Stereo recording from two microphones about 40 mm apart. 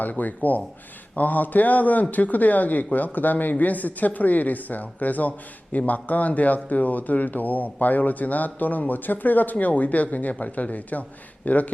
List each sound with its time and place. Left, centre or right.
0.0 s speech: left